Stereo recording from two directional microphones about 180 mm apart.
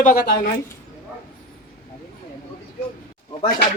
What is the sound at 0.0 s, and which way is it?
Speech, 50° left (ahead or behind).